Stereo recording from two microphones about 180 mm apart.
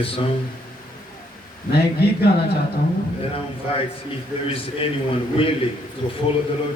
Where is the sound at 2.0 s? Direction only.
65° left (ahead or behind).